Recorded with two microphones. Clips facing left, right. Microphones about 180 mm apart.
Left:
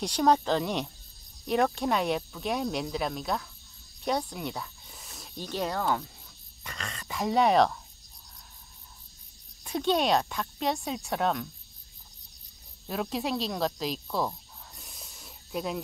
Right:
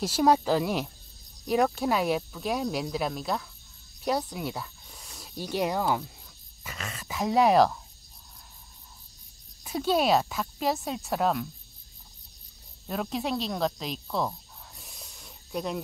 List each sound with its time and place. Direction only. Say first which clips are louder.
0.0 s speech: right 1 dB; 5° right (ahead or behind)
4.0 s a sound: right 1 dB; 5° right (ahead or behind)
5.4 s speech: right 3 dB; 10° right (ahead or behind)
9.6 s speech: right 1 dB; 5° right (ahead or behind)
12.8 s cricket: even; centre (ahead or behind)